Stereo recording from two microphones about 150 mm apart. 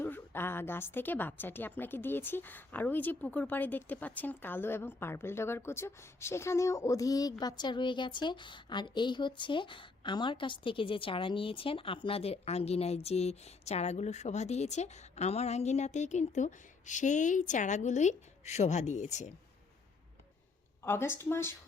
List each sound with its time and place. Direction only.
0.0 s a woman's voice: 15° left (ahead or behind); by 19.3 s 50° left (ahead or behind)
20.8 s a woman's voice: 15° left (ahead or behind)